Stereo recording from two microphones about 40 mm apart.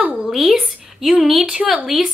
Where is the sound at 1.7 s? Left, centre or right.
Centre.